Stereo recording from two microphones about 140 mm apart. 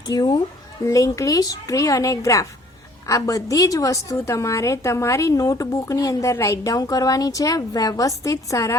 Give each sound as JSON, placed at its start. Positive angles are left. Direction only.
{"t": 0.1, "sound": "a woman's voice", "side_deg": 30}